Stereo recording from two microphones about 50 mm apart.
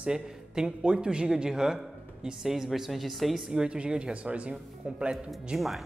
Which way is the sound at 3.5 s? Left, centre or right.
Centre.